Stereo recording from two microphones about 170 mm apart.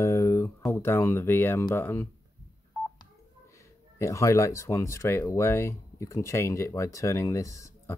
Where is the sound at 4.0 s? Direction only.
20° left (ahead or behind).